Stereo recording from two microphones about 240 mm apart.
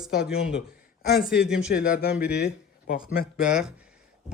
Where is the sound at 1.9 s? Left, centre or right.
Left.